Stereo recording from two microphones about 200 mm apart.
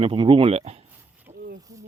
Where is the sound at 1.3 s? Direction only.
35° right (ahead or behind).